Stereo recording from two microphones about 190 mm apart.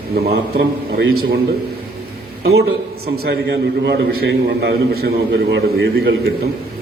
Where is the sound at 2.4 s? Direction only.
55° right (ahead or behind).